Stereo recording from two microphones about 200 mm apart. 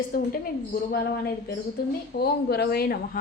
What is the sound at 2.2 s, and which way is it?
A woman's voice, 55° left (ahead or behind).